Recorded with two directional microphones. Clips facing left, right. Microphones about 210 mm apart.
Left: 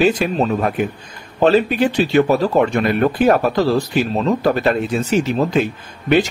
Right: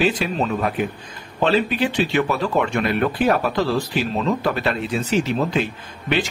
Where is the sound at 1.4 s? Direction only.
45° left (ahead or behind).